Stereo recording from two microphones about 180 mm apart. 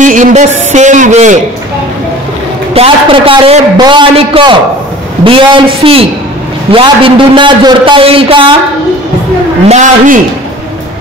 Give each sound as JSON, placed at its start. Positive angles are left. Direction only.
{"t": 0.0, "sound": "a man's voice", "side_deg": -45}
{"t": 2.7, "sound": "a man's voice", "side_deg": -30}
{"t": 9.7, "sound": "a man's voice", "side_deg": -45}